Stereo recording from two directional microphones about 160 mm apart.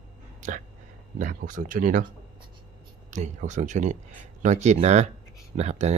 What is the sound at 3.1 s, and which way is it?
Speech, 50° right (ahead or behind).